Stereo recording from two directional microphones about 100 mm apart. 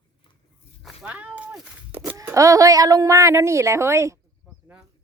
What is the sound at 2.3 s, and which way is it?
A woman's voice, 35° right (ahead or behind).